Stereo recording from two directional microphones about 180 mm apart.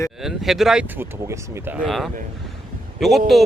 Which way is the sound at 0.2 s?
Centre (ahead or behind).